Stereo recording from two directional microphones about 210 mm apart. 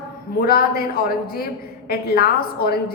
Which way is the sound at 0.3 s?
45° left (ahead or behind).